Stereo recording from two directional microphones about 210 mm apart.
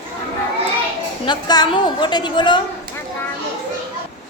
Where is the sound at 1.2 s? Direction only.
20° left (ahead or behind).